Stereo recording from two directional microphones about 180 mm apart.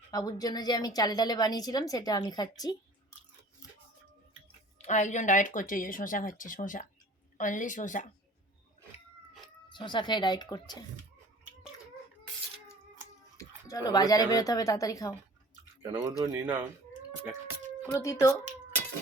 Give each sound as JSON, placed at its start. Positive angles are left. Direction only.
{"t": 0.1, "sound": "a woman's voice", "side_deg": 20}
{"t": 4.8, "sound": "speech", "side_deg": 40}
{"t": 9.6, "sound": "a woman's voice", "side_deg": 25}
{"t": 13.3, "sound": "speech", "side_deg": 20}
{"t": 15.8, "sound": "speech", "side_deg": -15}
{"t": 17.9, "sound": "speech", "side_deg": 15}